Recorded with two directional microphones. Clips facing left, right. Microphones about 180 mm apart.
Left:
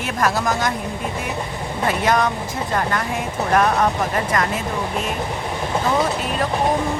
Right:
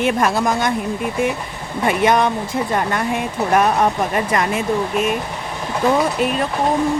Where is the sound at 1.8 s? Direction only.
20° right (ahead or behind).